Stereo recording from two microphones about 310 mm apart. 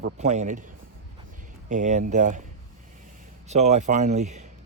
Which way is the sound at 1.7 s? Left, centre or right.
Right.